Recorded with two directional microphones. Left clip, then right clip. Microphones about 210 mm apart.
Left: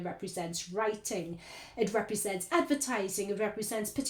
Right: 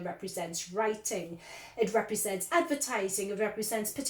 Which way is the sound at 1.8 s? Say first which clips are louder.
Right 2 dB; 40° left (ahead or behind).